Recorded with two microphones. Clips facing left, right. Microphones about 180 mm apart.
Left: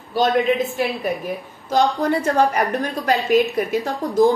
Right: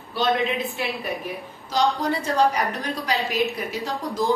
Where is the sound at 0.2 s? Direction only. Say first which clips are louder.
Left 5 dB; 45° left (ahead or behind).